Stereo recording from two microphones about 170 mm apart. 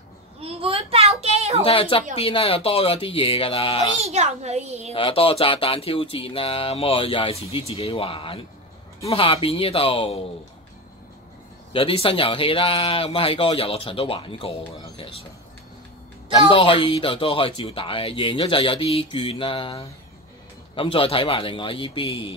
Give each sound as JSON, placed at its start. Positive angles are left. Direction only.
{"t": 0.4, "sound": "a sound", "side_deg": -35}
{"t": 1.6, "sound": "a woman's voice", "side_deg": 30}
{"t": 4.0, "sound": "a child's voice", "side_deg": -40}
{"t": 4.9, "sound": "speech", "side_deg": 35}
{"t": 11.7, "sound": "speech", "side_deg": 35}
{"t": 16.3, "sound": "speech", "side_deg": 30}